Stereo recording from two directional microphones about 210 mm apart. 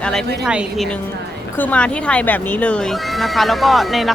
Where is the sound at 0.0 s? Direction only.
5° left (ahead or behind).